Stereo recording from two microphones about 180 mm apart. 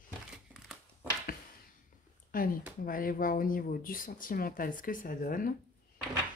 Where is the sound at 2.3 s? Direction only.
50° left (ahead or behind).